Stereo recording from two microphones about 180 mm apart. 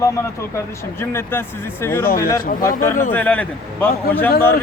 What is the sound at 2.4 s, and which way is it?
Speech, 50° left (ahead or behind).